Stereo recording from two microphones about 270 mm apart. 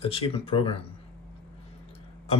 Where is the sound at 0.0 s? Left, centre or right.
Left.